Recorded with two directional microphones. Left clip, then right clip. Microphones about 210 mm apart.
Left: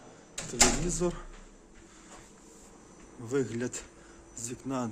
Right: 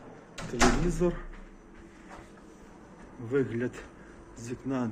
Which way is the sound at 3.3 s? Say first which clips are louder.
Right 2 dB; 25° left (ahead or behind).